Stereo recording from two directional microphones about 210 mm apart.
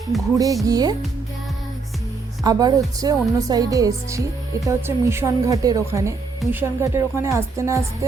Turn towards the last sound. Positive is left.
turn(degrees=-15)  # may be behind; listen again after turning